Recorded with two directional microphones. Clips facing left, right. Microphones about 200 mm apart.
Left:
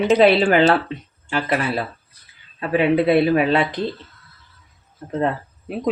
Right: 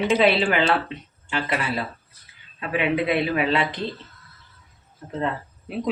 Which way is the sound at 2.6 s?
35° left (ahead or behind).